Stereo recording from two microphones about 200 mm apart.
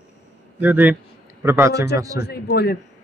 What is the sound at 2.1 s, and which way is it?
Speech, 55° left (ahead or behind).